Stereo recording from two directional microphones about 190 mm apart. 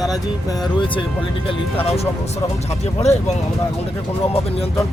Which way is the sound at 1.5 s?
30° left (ahead or behind).